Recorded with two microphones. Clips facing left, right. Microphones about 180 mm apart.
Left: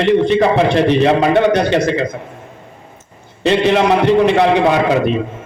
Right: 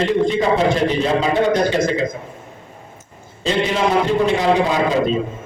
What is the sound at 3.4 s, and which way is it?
A man's voice, 70° left (ahead or behind).